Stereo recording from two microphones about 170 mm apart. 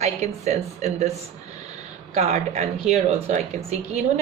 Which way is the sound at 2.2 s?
40° right (ahead or behind).